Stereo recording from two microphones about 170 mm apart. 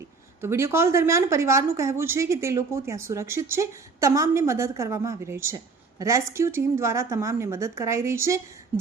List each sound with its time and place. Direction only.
0.4 s a woman's voice: 15° right (ahead or behind)